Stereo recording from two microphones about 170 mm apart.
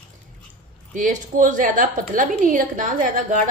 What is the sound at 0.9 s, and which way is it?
A woman's voice, 50° right (ahead or behind).